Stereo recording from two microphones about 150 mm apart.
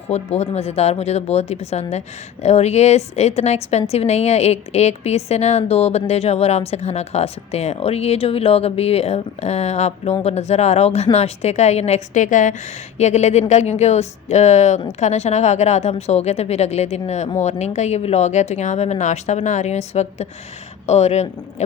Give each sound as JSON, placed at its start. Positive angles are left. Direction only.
{"t": 0.1, "sound": "speech", "side_deg": 45}